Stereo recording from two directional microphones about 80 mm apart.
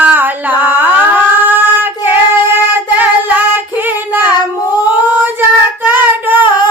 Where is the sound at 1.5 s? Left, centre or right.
Right.